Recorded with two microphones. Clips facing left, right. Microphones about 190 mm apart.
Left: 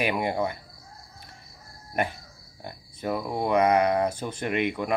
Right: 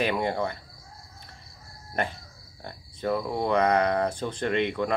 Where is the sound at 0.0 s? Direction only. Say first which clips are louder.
Even; 10° left (ahead or behind).